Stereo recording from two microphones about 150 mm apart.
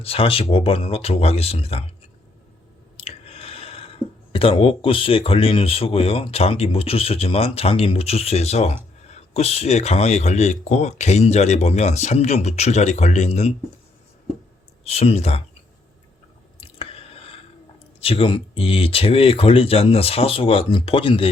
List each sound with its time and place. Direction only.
0.0 s speech: 40° left (ahead or behind)
3.0 s speech: 40° left (ahead or behind)
14.8 s speech: 45° left (ahead or behind)
16.6 s chewing: 40° left (ahead or behind)
18.0 s speech: 40° left (ahead or behind)